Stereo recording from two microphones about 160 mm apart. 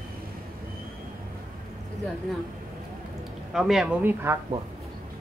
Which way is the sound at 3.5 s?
5° right (ahead or behind).